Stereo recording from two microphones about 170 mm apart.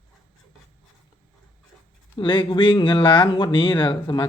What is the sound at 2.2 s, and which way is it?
Speech, 30° left (ahead or behind).